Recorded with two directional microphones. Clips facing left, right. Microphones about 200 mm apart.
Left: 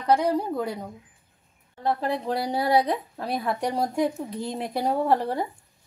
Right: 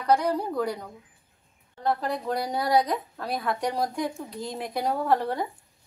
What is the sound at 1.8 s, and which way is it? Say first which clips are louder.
A woman's voice: left 1 dB; 25° left (ahead or behind).